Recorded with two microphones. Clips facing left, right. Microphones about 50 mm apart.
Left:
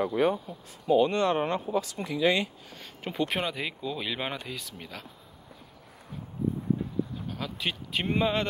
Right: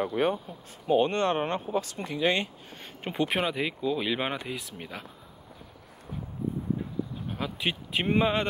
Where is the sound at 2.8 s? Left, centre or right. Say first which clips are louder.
Right 1 dB; right.